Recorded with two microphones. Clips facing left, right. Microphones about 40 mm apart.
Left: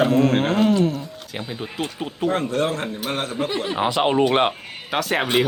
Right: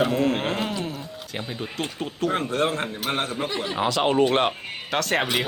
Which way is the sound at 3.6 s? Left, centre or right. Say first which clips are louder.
Left 2 dB; centre.